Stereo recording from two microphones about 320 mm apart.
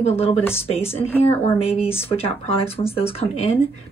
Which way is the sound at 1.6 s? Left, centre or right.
Centre.